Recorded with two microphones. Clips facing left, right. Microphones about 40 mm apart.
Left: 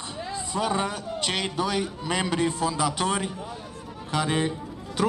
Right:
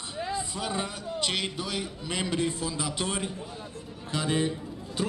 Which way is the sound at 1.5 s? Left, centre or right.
Left.